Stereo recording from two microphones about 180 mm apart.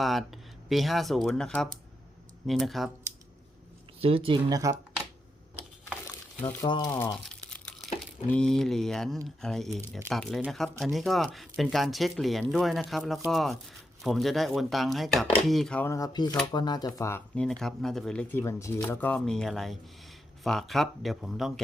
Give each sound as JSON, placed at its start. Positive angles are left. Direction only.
{"t": 0.0, "sound": "speech", "side_deg": 0}
{"t": 4.0, "sound": "speech", "side_deg": -30}
{"t": 6.6, "sound": "speech", "side_deg": 25}
{"t": 8.3, "sound": "speech", "side_deg": 5}